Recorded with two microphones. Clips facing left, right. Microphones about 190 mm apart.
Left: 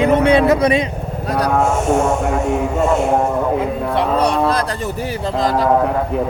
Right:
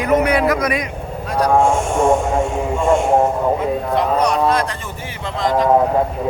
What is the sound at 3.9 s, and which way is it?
Speech, 30° left (ahead or behind).